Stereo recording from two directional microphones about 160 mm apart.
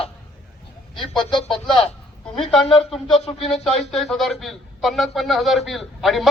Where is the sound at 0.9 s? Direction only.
Centre (ahead or behind).